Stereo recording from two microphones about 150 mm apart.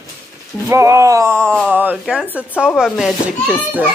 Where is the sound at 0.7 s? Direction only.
20° right (ahead or behind).